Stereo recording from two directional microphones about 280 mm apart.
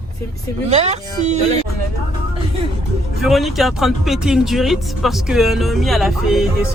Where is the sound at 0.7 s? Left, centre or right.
Right.